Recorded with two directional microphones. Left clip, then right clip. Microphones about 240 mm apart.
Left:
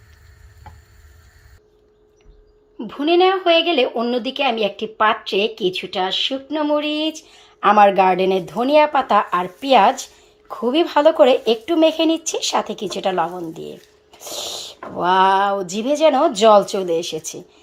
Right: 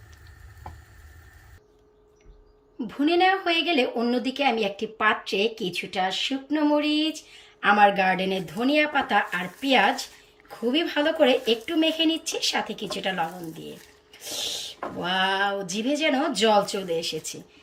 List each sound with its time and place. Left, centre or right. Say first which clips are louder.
2.7 s a woman's voice: left 6 dB; centre
14.1 s speech: left 3 dB; centre